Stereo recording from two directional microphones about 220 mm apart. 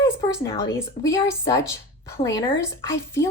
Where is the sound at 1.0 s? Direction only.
15° left (ahead or behind).